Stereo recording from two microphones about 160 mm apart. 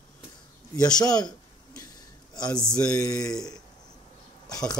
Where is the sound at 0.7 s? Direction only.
25° left (ahead or behind).